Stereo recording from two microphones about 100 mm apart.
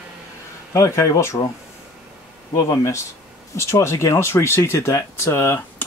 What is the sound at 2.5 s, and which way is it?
Speech, 30° left (ahead or behind).